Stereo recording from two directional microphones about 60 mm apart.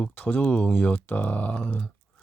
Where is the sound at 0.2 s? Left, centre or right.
Left.